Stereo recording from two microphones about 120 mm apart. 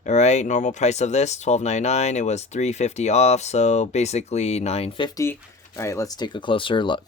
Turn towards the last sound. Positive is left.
turn(degrees=40)  # may be behind; listen again after turning